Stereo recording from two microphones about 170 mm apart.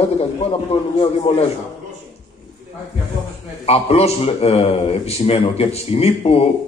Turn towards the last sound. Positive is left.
turn(degrees=35)  # may be behind; listen again after turning